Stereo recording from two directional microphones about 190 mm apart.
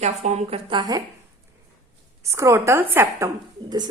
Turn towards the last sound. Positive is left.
turn(degrees=-20)  # may be behind; listen again after turning